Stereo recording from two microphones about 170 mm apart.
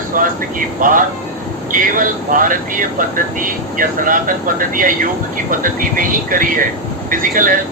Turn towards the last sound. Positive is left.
turn(degrees=-55)  # may be behind; listen again after turning